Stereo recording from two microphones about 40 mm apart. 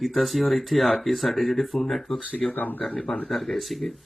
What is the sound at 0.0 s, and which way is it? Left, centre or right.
Speech, centre.